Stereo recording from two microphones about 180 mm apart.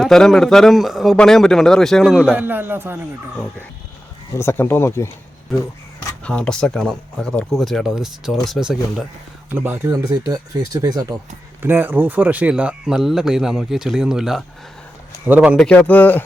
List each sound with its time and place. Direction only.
0.0 s speech: centre (ahead or behind)
2.3 s speech: 10° right (ahead or behind)
4.3 s speech: 15° left (ahead or behind); by 15.5 s 10° right (ahead or behind)
15.5 s a man's voice: 5° left (ahead or behind)